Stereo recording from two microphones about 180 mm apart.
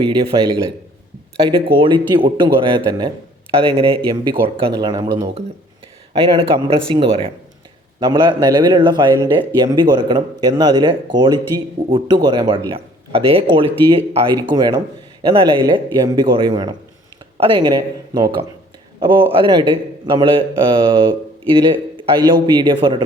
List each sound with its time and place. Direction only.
0.0 s speech: 30° right (ahead or behind)
1.5 s speech: 30° right (ahead or behind)
21.5 s speech: 25° right (ahead or behind)